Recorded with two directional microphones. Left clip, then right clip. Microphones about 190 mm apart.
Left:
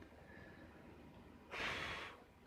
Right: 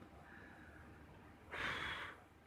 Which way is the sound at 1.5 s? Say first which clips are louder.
Right 1 dB; 20° left (ahead or behind).